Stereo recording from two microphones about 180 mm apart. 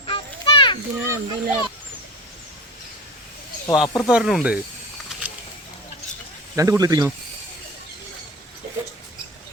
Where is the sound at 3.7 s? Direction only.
Centre (ahead or behind).